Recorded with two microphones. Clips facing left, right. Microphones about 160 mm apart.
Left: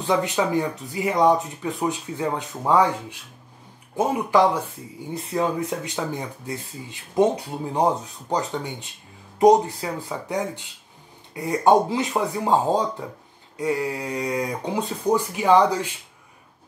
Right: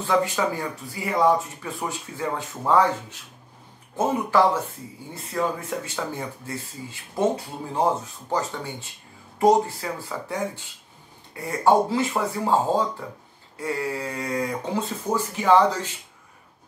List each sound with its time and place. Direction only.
0.0 s speech: 20° left (ahead or behind)
5.1 s speech: 20° left (ahead or behind)